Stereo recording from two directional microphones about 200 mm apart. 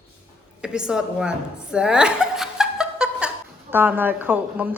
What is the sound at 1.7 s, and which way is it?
Chuckle, 5° right (ahead or behind).